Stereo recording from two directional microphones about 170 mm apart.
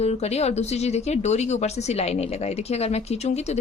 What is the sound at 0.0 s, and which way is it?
A woman's voice, 40° left (ahead or behind).